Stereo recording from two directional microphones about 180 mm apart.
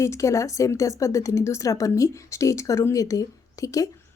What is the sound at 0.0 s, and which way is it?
A woman's voice, 15° left (ahead or behind).